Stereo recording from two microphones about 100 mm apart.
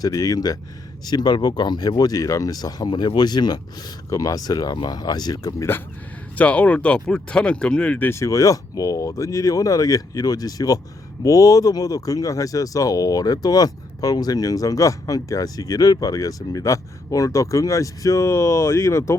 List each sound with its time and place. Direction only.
0.0 s speech: 35° left (ahead or behind)
6.3 s speech: 15° left (ahead or behind)
8.2 s speech: 35° left (ahead or behind)